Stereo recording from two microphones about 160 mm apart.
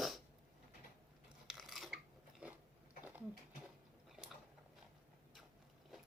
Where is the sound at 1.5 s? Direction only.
Centre (ahead or behind).